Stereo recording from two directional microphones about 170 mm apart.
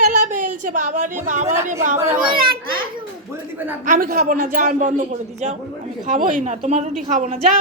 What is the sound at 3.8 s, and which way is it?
A man's voice, 50° right (ahead or behind).